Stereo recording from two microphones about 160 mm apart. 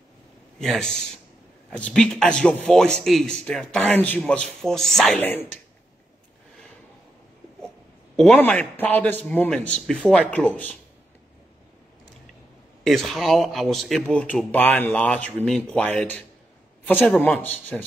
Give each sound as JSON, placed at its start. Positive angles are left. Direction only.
{"t": 0.6, "sound": "speech", "side_deg": 5}
{"t": 8.4, "sound": "a man's voice", "side_deg": 10}
{"t": 12.8, "sound": "a man's voice", "side_deg": 0}